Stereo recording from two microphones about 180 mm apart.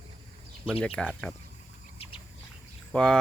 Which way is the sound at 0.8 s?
5° left (ahead or behind).